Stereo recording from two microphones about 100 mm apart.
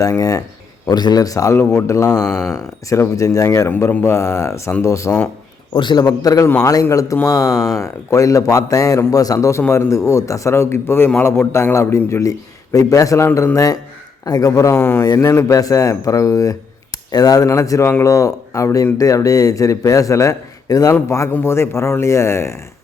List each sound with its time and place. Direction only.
0.0 s speech: 35° left (ahead or behind)
2.1 s speech: 5° left (ahead or behind)
2.9 s speech: 35° left (ahead or behind)
3.7 s a man's voice: 20° left (ahead or behind)
5.7 s a man's voice: 50° left (ahead or behind); by 22.6 s 25° left (ahead or behind)